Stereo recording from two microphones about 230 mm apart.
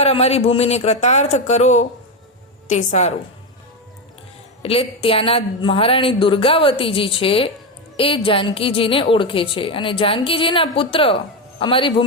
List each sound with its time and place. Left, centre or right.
0.0 s a woman's voice: left
4.6 s a woman's voice: left